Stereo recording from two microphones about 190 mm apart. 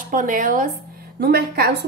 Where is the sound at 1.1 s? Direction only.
55° right (ahead or behind).